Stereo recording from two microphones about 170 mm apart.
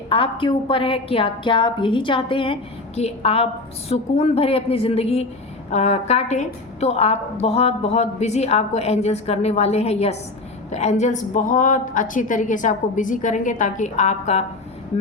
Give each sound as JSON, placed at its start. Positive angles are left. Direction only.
{"t": 0.1, "sound": "a woman's voice", "side_deg": 30}